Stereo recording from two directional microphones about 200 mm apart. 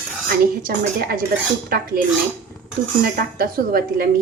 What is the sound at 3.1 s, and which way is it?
Speech, 45° right (ahead or behind).